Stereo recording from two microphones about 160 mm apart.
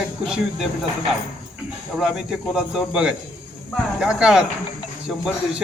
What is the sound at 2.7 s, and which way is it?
Speech, 5° right (ahead or behind).